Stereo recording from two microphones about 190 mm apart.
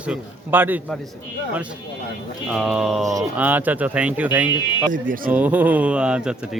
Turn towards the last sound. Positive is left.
turn(degrees=-5)  # may be behind; listen again after turning